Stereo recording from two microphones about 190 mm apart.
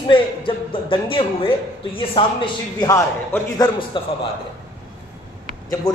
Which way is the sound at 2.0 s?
25° left (ahead or behind).